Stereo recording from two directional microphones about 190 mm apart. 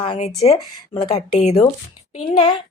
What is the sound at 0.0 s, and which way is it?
A woman's voice, 30° left (ahead or behind).